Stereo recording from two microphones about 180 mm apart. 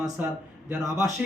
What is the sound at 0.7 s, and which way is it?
Speech, 20° right (ahead or behind).